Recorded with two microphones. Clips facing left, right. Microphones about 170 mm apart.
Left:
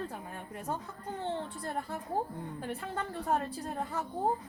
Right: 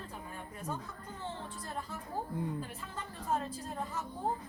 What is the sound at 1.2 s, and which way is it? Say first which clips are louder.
A woman's voice: left 6 dB; 60° left (ahead or behind).